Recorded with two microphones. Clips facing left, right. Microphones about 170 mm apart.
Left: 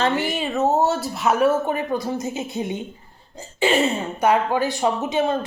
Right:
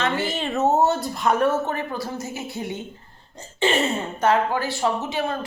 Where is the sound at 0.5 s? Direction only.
Centre (ahead or behind); by 2.8 s 20° left (ahead or behind).